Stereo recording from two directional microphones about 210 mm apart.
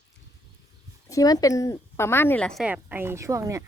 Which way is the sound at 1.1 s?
15° left (ahead or behind).